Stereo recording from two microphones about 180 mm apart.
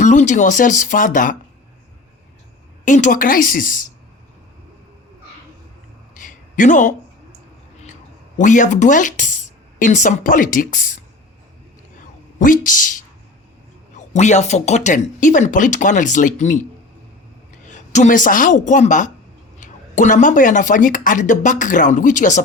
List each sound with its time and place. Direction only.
0.0 s speech: 45° left (ahead or behind)
2.8 s speech: 45° left (ahead or behind)
6.1 s a sound: 45° left (ahead or behind)
8.4 s speech: 45° left (ahead or behind)
12.4 s speech: 50° left (ahead or behind)
17.7 s a woman's voice: 40° left (ahead or behind)